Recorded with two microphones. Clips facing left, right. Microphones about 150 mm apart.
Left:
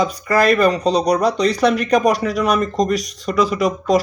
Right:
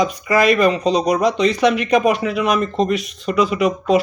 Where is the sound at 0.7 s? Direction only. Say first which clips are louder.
Even; 35° left (ahead or behind).